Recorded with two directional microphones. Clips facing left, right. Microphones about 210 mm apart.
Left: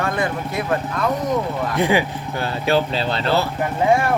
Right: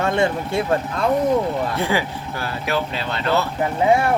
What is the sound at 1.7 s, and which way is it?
Speech, 15° left (ahead or behind).